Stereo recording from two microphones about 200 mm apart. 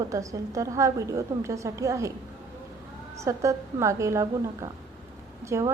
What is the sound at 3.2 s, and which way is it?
A woman's voice, 15° right (ahead or behind).